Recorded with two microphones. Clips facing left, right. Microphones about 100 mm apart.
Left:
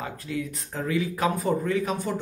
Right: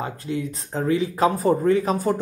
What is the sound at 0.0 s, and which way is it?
Speech, 30° right (ahead or behind).